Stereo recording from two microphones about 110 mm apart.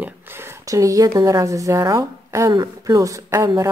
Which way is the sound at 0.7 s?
30° right (ahead or behind).